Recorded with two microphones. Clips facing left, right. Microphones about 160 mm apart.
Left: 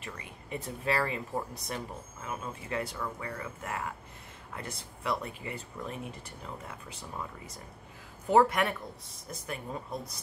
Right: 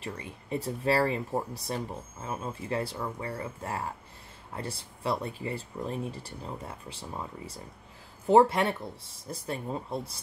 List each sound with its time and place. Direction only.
0.0 s speech: 30° right (ahead or behind)